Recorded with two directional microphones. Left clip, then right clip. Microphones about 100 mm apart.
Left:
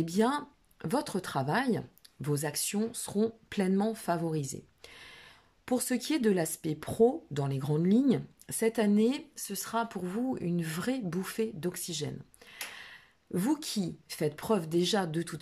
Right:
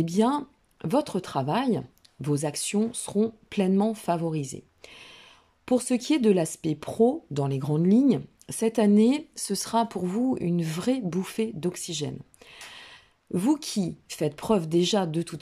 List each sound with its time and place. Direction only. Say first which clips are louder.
0.0 s speech: right 4 dB; 30° right (ahead or behind)
9.3 s speech: right 8 dB; 55° right (ahead or behind); by 15.4 s 20° right (ahead or behind)